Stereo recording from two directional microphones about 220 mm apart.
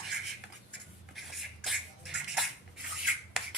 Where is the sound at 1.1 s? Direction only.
Centre (ahead or behind).